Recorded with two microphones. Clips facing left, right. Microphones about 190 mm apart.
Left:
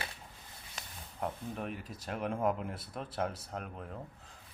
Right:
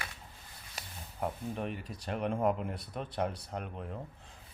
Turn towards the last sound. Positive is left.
turn(degrees=0)  # may be behind; listen again after turning